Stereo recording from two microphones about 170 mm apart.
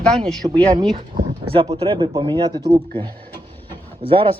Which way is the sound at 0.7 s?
30° right (ahead or behind).